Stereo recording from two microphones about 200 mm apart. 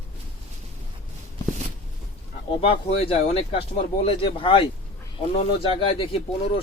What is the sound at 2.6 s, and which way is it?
Speech, 30° left (ahead or behind).